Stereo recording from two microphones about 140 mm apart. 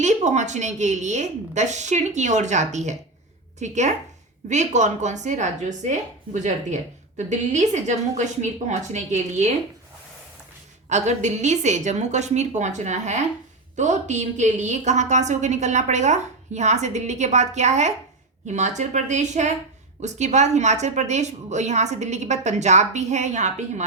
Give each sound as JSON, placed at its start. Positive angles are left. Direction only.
{"t": 0.0, "sound": "a woman's voice", "side_deg": -55}
{"t": 10.8, "sound": "a woman's voice", "side_deg": -55}